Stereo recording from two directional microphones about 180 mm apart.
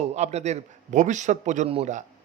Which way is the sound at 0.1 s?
40° right (ahead or behind).